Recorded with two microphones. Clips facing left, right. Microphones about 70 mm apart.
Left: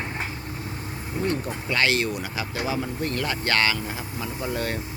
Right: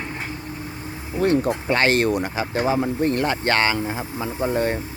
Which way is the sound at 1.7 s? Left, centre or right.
Right.